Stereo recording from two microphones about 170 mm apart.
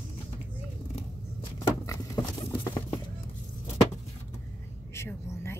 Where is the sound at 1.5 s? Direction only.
20° left (ahead or behind).